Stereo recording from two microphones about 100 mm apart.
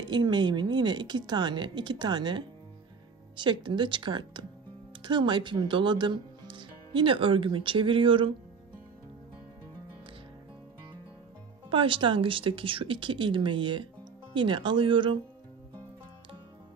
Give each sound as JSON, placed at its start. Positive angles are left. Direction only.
{"t": 0.0, "sound": "a woman's voice", "side_deg": -45}
{"t": 11.7, "sound": "a woman's voice", "side_deg": -55}